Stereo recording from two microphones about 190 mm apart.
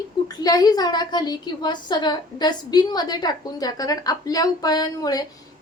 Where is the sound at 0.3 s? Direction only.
20° left (ahead or behind).